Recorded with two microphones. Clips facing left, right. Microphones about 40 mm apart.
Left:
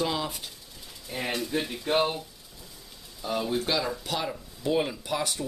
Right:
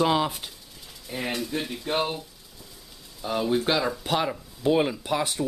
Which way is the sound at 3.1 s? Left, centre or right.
Centre.